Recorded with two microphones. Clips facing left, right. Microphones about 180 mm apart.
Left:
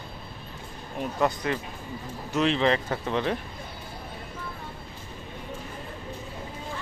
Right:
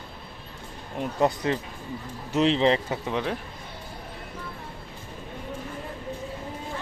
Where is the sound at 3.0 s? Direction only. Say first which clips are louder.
Left 1 dB; 5° right (ahead or behind).